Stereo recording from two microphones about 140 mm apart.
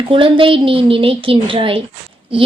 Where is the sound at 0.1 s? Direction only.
40° right (ahead or behind).